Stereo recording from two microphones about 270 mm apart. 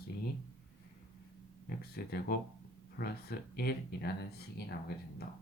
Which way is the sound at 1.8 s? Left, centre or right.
Left.